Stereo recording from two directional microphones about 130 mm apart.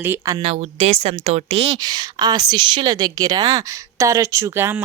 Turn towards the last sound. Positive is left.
turn(degrees=-20)  # may be behind; listen again after turning